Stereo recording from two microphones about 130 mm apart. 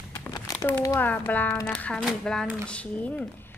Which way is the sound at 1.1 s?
10° left (ahead or behind).